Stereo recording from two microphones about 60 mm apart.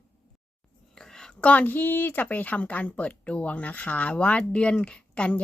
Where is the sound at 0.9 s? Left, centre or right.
Centre.